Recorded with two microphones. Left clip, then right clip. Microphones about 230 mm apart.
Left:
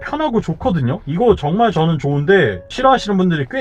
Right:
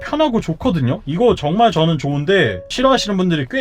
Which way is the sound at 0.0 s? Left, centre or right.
Right.